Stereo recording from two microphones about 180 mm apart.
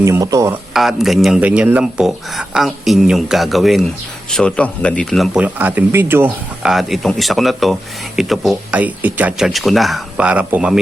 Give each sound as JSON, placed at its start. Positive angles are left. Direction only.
{"t": 0.0, "sound": "speech", "side_deg": -20}
{"t": 0.7, "sound": "speech", "side_deg": 0}
{"t": 6.6, "sound": "speech", "side_deg": 0}